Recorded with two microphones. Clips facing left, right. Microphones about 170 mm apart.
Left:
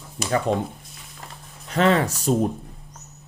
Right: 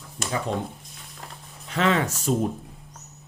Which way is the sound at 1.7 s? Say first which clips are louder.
Left 4 dB; 40° left (ahead or behind).